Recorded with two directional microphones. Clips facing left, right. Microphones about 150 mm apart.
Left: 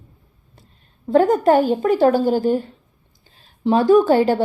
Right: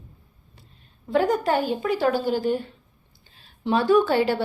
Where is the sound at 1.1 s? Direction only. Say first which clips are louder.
Left 7 dB; 45° left (ahead or behind).